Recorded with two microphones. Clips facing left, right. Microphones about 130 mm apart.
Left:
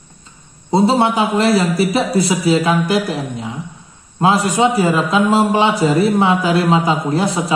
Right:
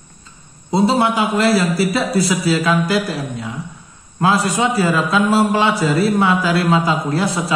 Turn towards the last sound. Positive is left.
turn(degrees=20)  # may be behind; listen again after turning